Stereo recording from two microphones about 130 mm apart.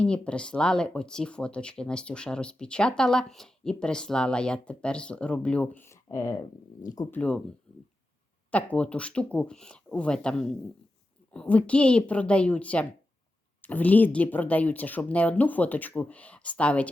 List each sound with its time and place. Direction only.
0.0 s speech: 10° left (ahead or behind); by 7.1 s 30° left (ahead or behind)
7.1 s speech: 10° left (ahead or behind)
7.7 s a sound: 10° left (ahead or behind)
8.4 s speech: 10° left (ahead or behind)